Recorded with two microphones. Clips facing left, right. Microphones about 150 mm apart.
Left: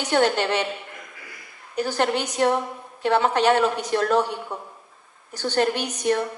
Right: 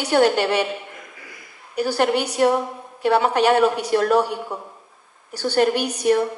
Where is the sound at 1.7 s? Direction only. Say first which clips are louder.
Right 3 dB; 10° right (ahead or behind).